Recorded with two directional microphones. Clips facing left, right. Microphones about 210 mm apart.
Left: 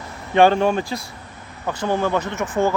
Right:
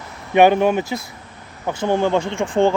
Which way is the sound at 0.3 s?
20° right (ahead or behind).